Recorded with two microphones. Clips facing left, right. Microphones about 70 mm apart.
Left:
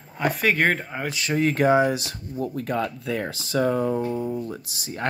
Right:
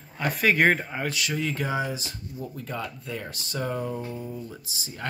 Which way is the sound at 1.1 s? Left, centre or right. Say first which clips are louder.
Left 4 dB; left.